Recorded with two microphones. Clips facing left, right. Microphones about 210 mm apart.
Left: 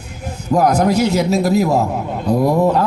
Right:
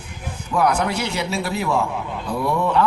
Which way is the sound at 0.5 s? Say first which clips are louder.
Left 6 dB; 40° left (ahead or behind).